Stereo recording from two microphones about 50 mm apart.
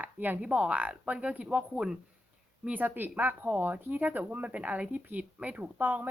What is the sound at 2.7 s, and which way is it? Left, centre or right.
Speech, right.